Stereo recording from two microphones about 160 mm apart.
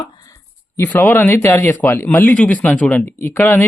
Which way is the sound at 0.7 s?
10° left (ahead or behind).